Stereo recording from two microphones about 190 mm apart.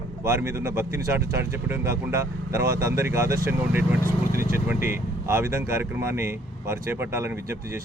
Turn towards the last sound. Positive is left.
turn(degrees=-15)  # may be behind; listen again after turning